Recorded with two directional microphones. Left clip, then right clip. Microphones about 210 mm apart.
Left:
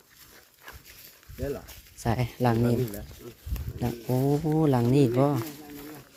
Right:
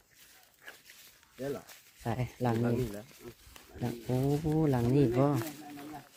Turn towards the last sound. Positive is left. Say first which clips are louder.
# left 5 dB
turn(degrees=10)  # may be behind; listen again after turning